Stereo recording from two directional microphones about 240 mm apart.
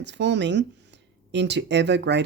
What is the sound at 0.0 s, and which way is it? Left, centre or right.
Speech, right.